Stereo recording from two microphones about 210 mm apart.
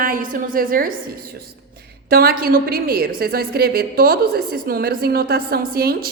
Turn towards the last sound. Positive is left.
turn(degrees=-45)  # may be behind; listen again after turning